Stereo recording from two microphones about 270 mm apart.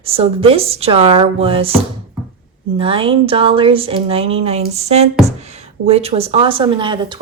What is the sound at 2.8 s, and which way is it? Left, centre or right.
A woman's voice, centre.